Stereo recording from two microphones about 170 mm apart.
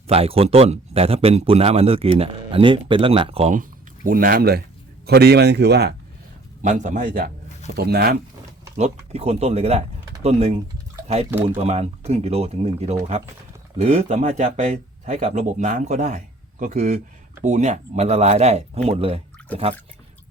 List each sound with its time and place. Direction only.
0.1 s speech: 35° right (ahead or behind)
3.5 s a man's voice: 55° right (ahead or behind); by 5.9 s 80° right
6.6 s speech: 45° right (ahead or behind)
7.8 s speech: 65° right (ahead or behind)
8.7 s speech: 40° right (ahead or behind)
11.4 s speech: 40° right (ahead or behind)